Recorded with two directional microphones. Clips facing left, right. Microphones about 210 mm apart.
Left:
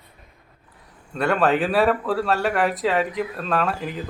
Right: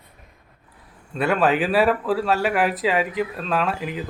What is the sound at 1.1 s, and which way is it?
Speech, centre (ahead or behind).